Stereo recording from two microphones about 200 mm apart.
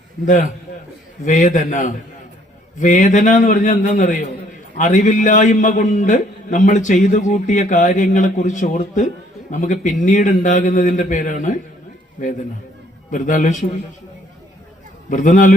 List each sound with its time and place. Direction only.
1.2 s a man's voice: 40° left (ahead or behind)
13.1 s a man's voice: 40° left (ahead or behind)
15.1 s a man's voice: 40° left (ahead or behind)